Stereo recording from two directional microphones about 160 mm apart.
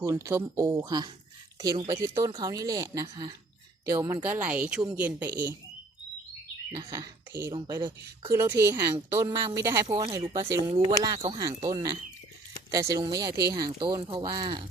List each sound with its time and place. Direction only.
0.0 s speech: 20° right (ahead or behind)
6.7 s speech: 20° right (ahead or behind)
10.7 s speech: 35° right (ahead or behind)